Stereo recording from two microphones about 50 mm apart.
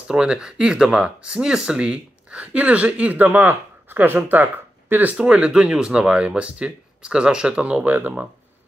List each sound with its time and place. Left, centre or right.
0.1 s speech: centre; by 5.1 s right
5.1 s speech: right